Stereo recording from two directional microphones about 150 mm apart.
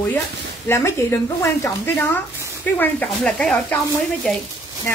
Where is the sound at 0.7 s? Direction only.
20° left (ahead or behind).